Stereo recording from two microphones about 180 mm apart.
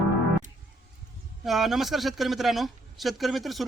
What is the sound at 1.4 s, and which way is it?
Speech, centre (ahead or behind).